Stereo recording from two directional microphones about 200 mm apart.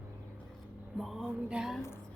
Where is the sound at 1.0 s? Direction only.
Centre (ahead or behind).